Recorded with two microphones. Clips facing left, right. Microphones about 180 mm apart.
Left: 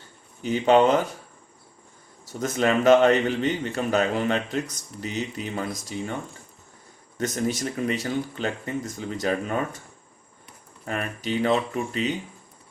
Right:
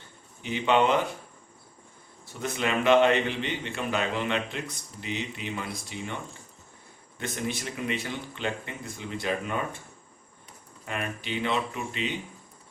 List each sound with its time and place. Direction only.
0.4 s a man's voice: 40° left (ahead or behind)
2.2 s a man's voice: 40° left (ahead or behind)
7.2 s a man's voice: 40° left (ahead or behind)
10.8 s a man's voice: 40° left (ahead or behind)